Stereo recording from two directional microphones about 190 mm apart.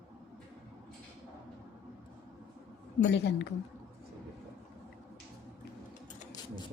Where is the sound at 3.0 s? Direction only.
65° left (ahead or behind).